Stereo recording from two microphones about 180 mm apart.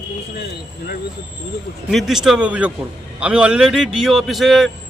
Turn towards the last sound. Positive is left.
turn(degrees=0)  # may be behind; listen again after turning